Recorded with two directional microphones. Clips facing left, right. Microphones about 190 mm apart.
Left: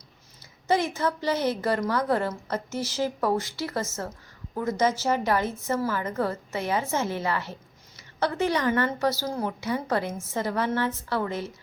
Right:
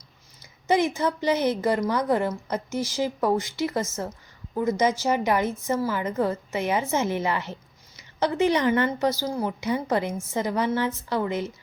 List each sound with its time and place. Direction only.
0.7 s a woman's voice: 15° right (ahead or behind)